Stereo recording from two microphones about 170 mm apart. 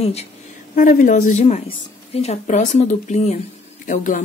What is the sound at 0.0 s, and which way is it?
Speech, 40° left (ahead or behind).